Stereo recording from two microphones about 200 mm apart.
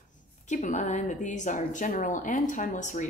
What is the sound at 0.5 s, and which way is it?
Speech, 40° left (ahead or behind).